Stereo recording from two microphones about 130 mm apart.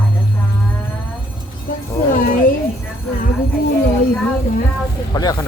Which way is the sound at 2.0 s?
90° left.